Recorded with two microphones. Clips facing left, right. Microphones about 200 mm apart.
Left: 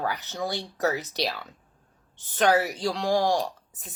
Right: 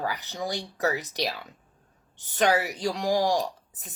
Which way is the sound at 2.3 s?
15° right (ahead or behind).